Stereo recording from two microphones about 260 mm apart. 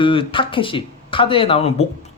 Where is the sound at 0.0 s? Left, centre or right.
Centre.